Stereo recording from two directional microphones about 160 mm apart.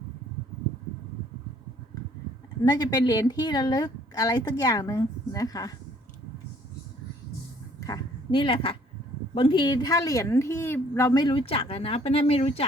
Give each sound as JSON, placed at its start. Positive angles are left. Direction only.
{"t": 2.6, "sound": "speech", "side_deg": 25}
{"t": 7.8, "sound": "a woman's voice", "side_deg": 20}